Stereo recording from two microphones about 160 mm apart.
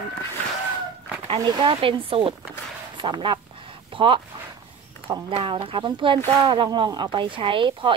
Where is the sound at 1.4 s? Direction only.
30° right (ahead or behind).